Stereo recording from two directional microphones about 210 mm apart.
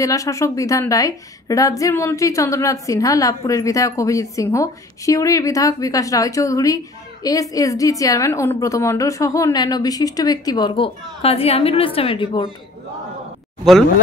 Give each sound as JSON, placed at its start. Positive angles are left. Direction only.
{"t": 0.0, "sound": "a woman's voice", "side_deg": 15}